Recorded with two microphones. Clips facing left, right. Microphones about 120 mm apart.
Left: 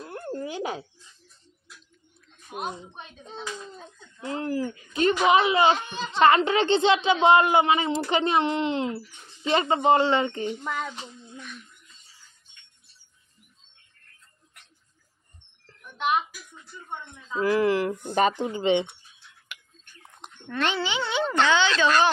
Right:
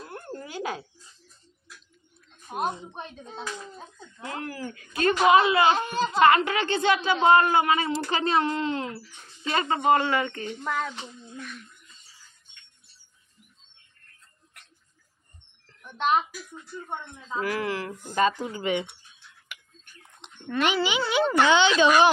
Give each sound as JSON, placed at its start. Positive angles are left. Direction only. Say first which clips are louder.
{"t": 0.3, "sound": "a sound", "louder": "left 3 dB", "side_deg": 20}
{"t": 2.4, "sound": "a sound", "louder": "right 5 dB", "side_deg": -40}
{"t": 4.3, "sound": "speech", "louder": "left 6 dB", "side_deg": 25}
{"t": 5.8, "sound": "speech", "louder": "right 7 dB", "side_deg": -40}
{"t": 6.1, "sound": "speech", "louder": "left 1 dB", "side_deg": 30}
{"t": 10.6, "sound": "speech", "louder": "right 2 dB", "side_deg": 5}
{"t": 17.4, "sound": "speech", "louder": "left 7 dB", "side_deg": 30}
{"t": 20.2, "sound": "a woman's voice", "louder": "right 2 dB", "side_deg": -10}